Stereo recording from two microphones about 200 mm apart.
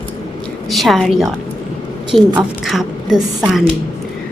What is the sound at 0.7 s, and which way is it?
A woman's voice, centre (ahead or behind).